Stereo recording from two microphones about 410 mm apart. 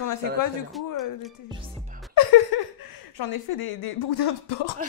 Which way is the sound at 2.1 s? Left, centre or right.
Left.